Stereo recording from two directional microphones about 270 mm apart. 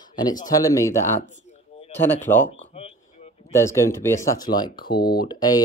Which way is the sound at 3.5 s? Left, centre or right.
Centre.